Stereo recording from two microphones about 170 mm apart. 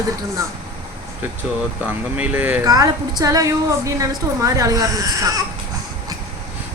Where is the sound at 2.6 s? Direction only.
20° right (ahead or behind).